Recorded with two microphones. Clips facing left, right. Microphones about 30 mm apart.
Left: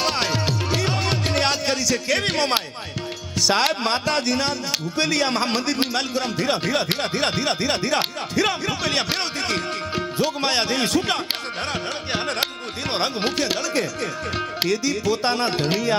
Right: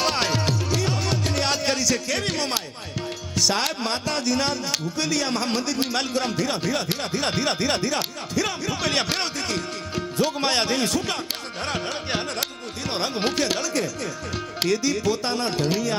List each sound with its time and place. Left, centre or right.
0.0 s music: centre
0.9 s music: left
1.5 s music: centre
2.0 s speech: left
5.9 s music: centre
6.4 s speech: left
7.3 s music: centre
7.9 s speech: left
8.8 s music: centre
10.2 s music: centre
10.8 s speech: centre
13.1 s music: centre
15.1 s speech: left